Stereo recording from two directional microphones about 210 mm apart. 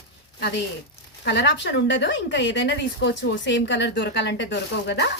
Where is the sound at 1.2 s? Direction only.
55° left (ahead or behind).